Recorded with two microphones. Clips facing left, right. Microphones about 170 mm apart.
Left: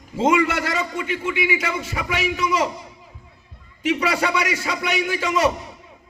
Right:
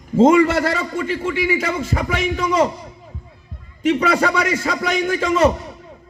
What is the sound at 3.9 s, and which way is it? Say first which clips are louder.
Speech: right 4 dB; 35° right (ahead or behind).